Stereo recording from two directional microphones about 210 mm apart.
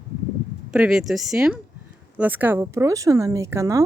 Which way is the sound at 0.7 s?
Centre (ahead or behind).